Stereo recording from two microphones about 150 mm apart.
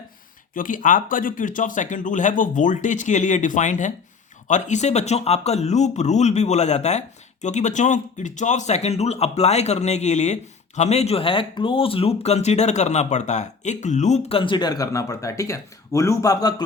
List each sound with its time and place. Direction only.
0.5 s a man's voice: 65° left (ahead or behind); by 16.6 s 25° left (ahead or behind)